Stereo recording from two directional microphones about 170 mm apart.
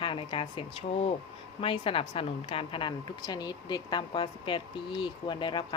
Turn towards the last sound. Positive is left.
turn(degrees=25)  # may be behind; listen again after turning